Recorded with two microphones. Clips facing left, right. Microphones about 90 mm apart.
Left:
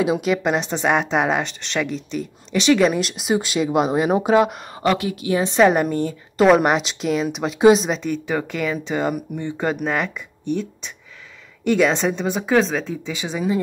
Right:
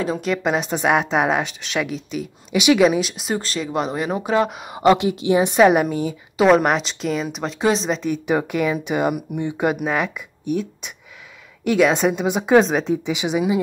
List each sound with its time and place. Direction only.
0.0 s speech: 5° left (ahead or behind)
4.7 s a woman's voice: 20° right (ahead or behind)
5.6 s speech: 5° right (ahead or behind)
8.3 s speech: 15° right (ahead or behind)